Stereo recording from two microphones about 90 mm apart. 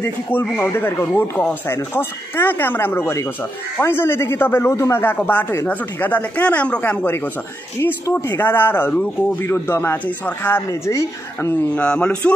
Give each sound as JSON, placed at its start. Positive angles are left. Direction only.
{"t": 0.0, "sound": "speech", "side_deg": 25}
{"t": 10.7, "sound": "a woman's voice", "side_deg": 35}
{"t": 11.7, "sound": "speech", "side_deg": 10}